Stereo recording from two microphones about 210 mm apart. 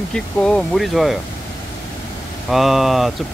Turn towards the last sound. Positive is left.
turn(degrees=0)  # may be behind; listen again after turning